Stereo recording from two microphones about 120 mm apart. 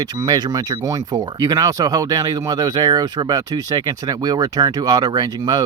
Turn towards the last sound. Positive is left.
turn(degrees=-35)  # may be behind; listen again after turning